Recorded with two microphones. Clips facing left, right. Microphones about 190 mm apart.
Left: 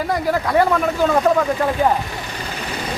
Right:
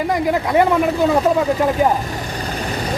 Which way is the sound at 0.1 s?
15° right (ahead or behind).